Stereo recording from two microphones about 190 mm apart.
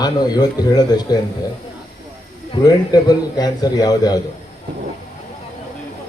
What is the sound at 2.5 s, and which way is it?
A man's voice, 20° left (ahead or behind).